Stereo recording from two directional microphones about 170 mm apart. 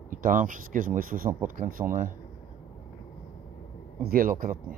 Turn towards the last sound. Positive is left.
turn(degrees=-55)  # may be behind; listen again after turning